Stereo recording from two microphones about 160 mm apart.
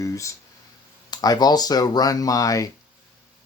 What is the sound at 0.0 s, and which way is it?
Speech, 20° left (ahead or behind).